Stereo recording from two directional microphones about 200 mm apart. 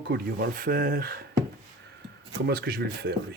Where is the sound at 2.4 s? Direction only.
50° right (ahead or behind).